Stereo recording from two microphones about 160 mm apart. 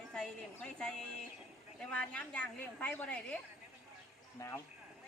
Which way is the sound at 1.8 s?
5° left (ahead or behind).